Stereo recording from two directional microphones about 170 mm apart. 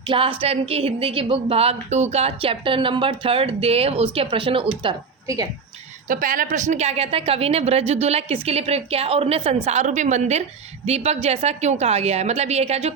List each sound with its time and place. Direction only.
0.1 s speech: 30° right (ahead or behind)
6.1 s a woman's voice: 50° right (ahead or behind)